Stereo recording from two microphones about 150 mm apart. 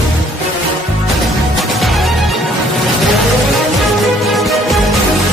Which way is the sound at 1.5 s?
Centre (ahead or behind).